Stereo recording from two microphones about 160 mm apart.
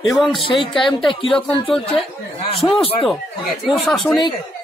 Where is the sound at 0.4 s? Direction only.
30° left (ahead or behind).